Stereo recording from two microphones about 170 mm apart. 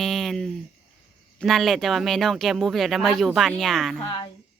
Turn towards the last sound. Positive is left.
turn(degrees=0)  # may be behind; listen again after turning